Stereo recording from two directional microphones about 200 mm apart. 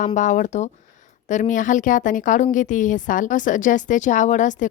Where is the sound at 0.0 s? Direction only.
40° left (ahead or behind).